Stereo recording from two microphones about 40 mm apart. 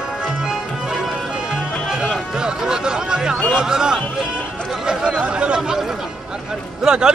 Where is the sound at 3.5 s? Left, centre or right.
Centre.